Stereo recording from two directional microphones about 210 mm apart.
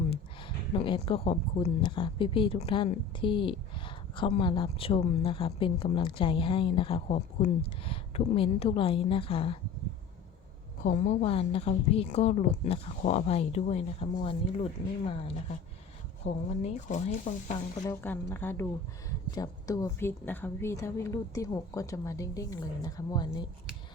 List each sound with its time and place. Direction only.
0.1 s speech: 25° left (ahead or behind)
10.8 s a woman's voice: 35° left (ahead or behind)
16.2 s a woman's voice: 30° left (ahead or behind)
17.8 s speech: 10° left (ahead or behind)